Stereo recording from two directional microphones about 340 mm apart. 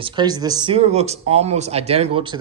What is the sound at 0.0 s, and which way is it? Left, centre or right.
Speech, centre.